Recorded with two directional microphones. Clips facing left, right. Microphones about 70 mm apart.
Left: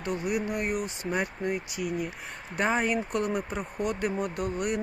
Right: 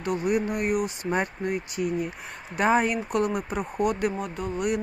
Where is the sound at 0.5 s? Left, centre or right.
Left.